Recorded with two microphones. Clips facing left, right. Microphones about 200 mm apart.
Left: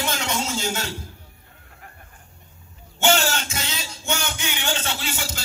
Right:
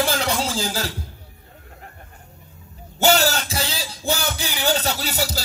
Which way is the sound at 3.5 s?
35° right (ahead or behind).